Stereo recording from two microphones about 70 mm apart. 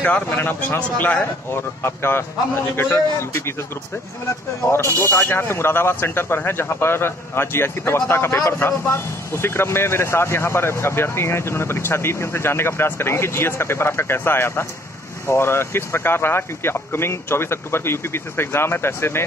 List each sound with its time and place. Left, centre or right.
0.4 s speech: left
1.5 s speech: left
4.8 s speech: left